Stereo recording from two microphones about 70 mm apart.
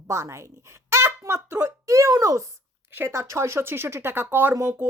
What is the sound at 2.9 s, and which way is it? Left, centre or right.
Speech, right.